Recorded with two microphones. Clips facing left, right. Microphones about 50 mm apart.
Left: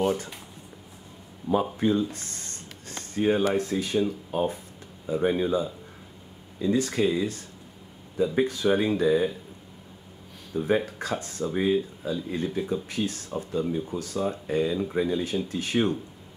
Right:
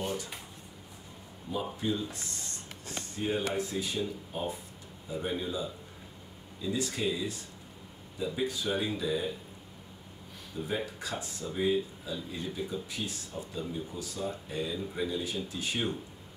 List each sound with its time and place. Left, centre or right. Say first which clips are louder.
0.0 s a sound: left 9 dB; left
1.5 s speech: left 9 dB; left
3.2 s speech: left 8 dB; left
10.7 s speech: left 9 dB; left